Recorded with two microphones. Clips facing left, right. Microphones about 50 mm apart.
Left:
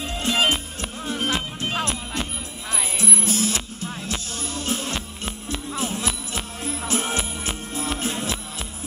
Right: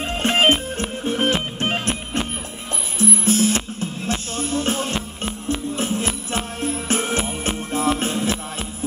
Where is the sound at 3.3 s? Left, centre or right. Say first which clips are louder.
Right 7 dB; right.